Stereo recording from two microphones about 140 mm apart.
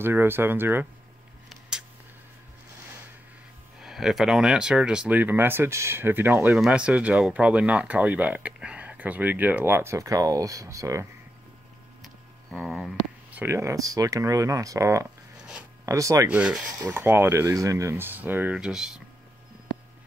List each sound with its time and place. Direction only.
0.0 s speech: 15° right (ahead or behind)
3.8 s speech: centre (ahead or behind)
6.5 s speech: 5° right (ahead or behind); by 11.1 s 20° right (ahead or behind)
12.0 s a sound: centre (ahead or behind)
13.3 s speech: 15° right (ahead or behind)
16.3 s speech: 5° right (ahead or behind)
16.8 s speech: 20° right (ahead or behind)